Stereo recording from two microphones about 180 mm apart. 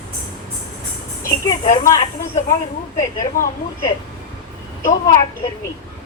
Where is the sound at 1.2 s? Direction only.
20° left (ahead or behind).